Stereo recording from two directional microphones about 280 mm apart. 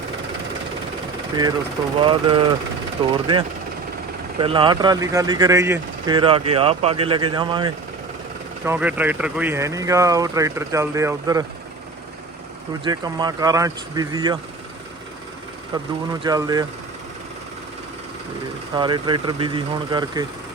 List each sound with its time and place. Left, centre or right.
2.0 s speech: centre
8.6 s speech: centre
12.8 s speech: centre
15.7 s speech: centre
18.7 s speech: centre